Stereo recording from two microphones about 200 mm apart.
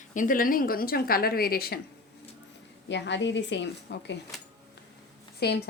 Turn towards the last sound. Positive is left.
turn(degrees=55)  # may be behind; listen again after turning